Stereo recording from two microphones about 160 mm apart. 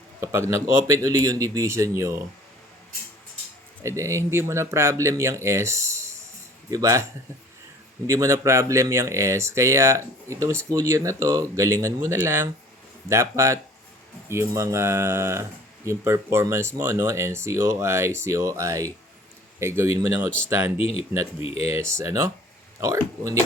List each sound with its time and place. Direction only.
0.2 s speech: 15° right (ahead or behind)
3.8 s speech: 20° right (ahead or behind)
20.7 s speech: 40° left (ahead or behind)
21.5 s speech: 15° right (ahead or behind)